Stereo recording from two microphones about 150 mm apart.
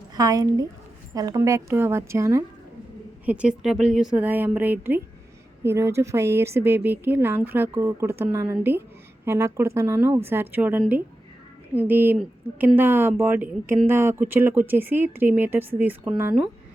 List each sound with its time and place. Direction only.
0.2 s a woman's voice: 25° right (ahead or behind)
3.2 s speech: 10° right (ahead or behind)